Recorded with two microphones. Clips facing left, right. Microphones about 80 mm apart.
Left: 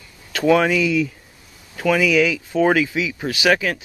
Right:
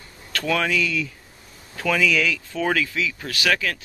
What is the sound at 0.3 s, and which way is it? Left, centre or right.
Speech, centre.